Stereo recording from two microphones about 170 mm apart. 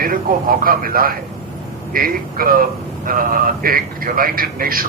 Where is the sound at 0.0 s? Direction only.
55° right (ahead or behind).